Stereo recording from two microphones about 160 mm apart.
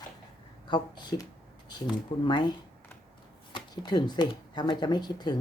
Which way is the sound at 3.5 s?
25° left (ahead or behind).